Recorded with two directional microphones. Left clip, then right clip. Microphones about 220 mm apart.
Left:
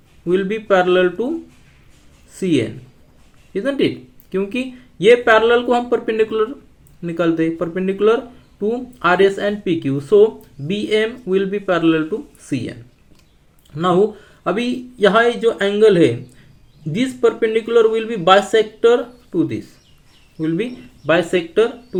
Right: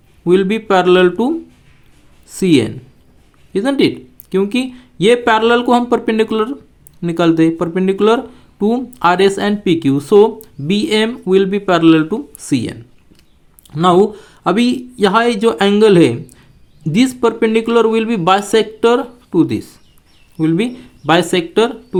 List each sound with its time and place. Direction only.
0.3 s speech: 45° right (ahead or behind)
2.3 s speech: 45° right (ahead or behind)